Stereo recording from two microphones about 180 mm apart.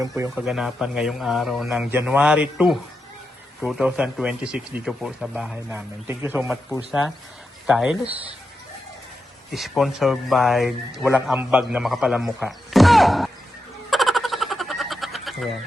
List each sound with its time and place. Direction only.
0.3 s speech: centre (ahead or behind)
7.7 s speech: 5° right (ahead or behind)
9.5 s speech: centre (ahead or behind)
13.9 s a sound: centre (ahead or behind)